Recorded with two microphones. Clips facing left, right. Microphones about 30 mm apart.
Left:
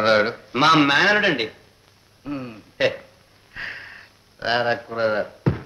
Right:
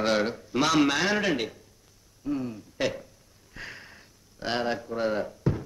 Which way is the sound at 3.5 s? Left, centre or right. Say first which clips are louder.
Left 9 dB; left.